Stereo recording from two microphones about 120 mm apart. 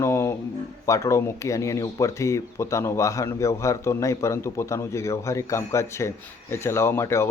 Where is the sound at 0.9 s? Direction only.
25° left (ahead or behind).